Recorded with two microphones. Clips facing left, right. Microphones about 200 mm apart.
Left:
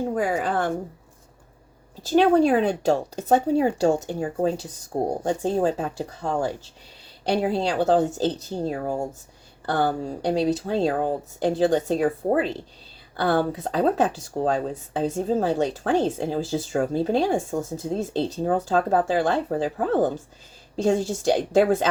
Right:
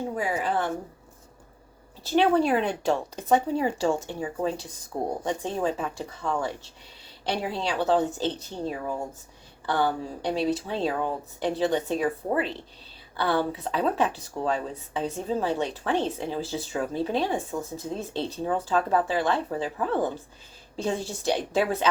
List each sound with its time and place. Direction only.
0.1 s a woman's voice: 50° left (ahead or behind)
2.0 s speech: 45° left (ahead or behind)
7.7 s speech: 45° left (ahead or behind)